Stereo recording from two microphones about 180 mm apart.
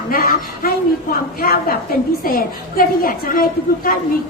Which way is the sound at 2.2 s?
55° left (ahead or behind).